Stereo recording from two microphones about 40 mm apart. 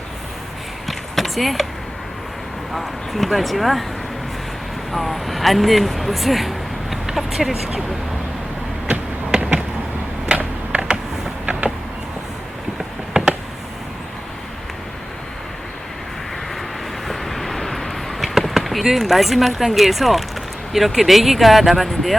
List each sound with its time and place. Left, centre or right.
0.9 s a sound: centre
2.7 s speech: centre
4.9 s speech: centre
8.9 s basketball bounce: right
10.3 s a sound: right
17.1 s vehicle: centre
20.7 s speech: centre